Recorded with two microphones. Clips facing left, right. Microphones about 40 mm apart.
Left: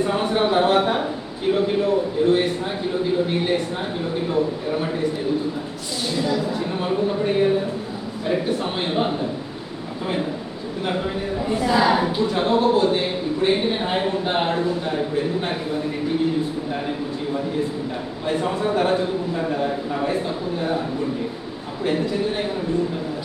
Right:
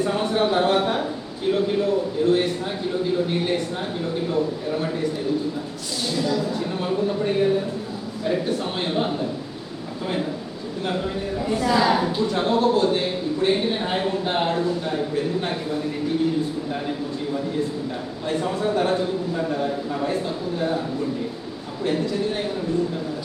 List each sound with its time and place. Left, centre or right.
0.0 s a sound: centre
3.4 s a man's voice: centre
6.1 s speech: centre
10.8 s speech: left
18.3 s speech: left
21.8 s speech: left